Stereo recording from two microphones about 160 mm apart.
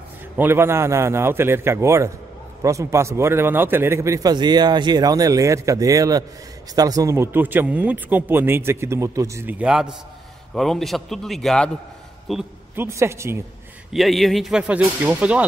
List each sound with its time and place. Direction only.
0.4 s a man's voice: 15° right (ahead or behind)
12.7 s speech: 15° right (ahead or behind)
13.9 s speech: centre (ahead or behind)